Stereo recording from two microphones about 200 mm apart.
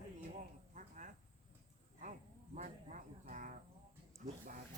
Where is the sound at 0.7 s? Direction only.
40° right (ahead or behind).